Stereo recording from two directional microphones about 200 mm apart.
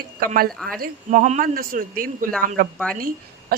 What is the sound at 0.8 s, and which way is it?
A woman's voice, 40° right (ahead or behind).